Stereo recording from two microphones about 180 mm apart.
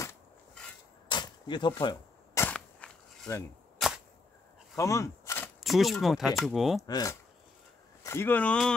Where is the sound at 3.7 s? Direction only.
5° right (ahead or behind).